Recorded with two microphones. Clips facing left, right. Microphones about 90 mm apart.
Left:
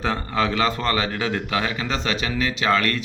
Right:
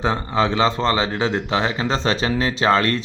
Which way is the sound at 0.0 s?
20° right (ahead or behind).